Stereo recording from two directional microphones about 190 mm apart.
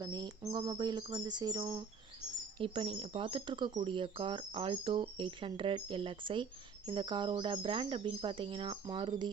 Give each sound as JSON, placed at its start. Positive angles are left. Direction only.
{"t": 0.0, "sound": "speech", "side_deg": -20}